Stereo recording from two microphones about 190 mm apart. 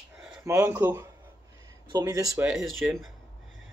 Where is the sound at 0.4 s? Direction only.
15° right (ahead or behind).